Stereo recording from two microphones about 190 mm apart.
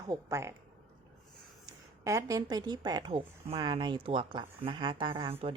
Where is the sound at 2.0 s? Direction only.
15° right (ahead or behind).